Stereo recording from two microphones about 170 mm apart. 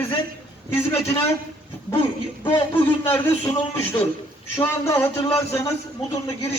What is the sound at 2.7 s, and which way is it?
A man's voice, 10° left (ahead or behind).